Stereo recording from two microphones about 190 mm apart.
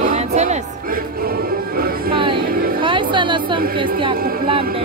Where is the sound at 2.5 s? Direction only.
50° right (ahead or behind).